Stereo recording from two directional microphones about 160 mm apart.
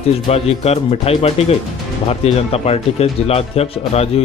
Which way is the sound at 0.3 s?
40° left (ahead or behind).